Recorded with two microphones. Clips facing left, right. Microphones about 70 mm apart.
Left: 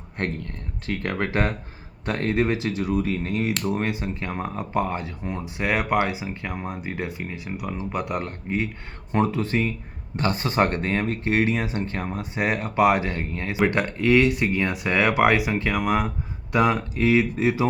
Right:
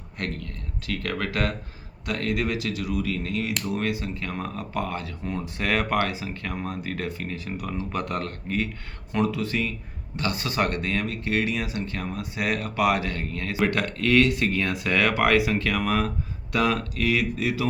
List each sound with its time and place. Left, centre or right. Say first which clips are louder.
0.9 s speech: left 3 dB; left
9.1 s speech: left 3 dB; left